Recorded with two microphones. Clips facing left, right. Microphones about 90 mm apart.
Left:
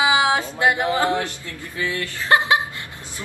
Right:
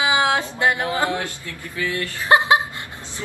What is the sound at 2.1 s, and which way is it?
Chuckle, 20° right (ahead or behind).